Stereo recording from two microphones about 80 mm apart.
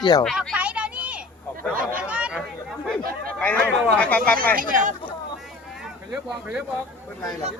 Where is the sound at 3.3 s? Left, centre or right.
Centre.